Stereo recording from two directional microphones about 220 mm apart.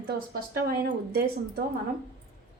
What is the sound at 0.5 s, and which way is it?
A woman's voice, 45° right (ahead or behind).